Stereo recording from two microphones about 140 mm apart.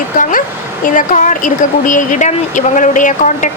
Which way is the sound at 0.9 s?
65° left (ahead or behind).